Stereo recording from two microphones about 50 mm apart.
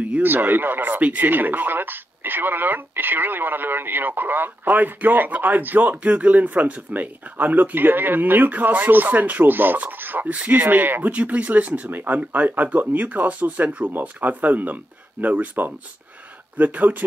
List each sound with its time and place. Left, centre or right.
0.2 s speech: right
10.2 s speech: right
11.9 s speech: right